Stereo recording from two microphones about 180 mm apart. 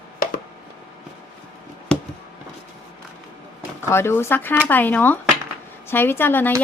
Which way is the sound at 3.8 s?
15° left (ahead or behind).